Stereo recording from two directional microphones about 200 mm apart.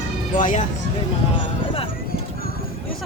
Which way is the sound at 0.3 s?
40° left (ahead or behind).